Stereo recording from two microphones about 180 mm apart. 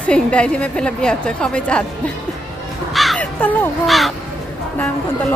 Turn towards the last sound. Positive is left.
turn(degrees=10)  # may be behind; listen again after turning